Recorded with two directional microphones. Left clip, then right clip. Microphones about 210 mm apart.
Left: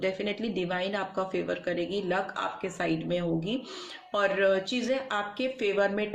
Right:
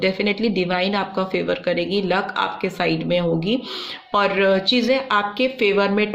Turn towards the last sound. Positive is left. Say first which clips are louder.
# right 9 dB
turn(degrees=-40)  # may be behind; listen again after turning